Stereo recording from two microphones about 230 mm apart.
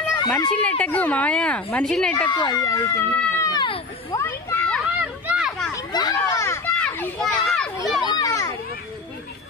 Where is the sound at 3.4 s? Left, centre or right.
Centre.